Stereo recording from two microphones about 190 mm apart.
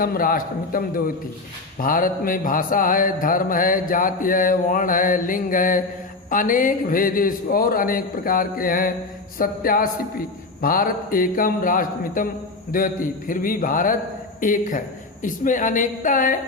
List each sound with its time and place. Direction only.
0.0 s mantra: 50° left (ahead or behind)